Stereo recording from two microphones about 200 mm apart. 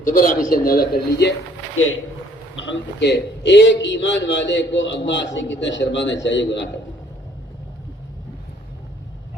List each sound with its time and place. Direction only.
0.0 s a man's voice: 45° left (ahead or behind)
1.7 s a man's voice: 85° left
2.6 s a man's voice: 65° left (ahead or behind)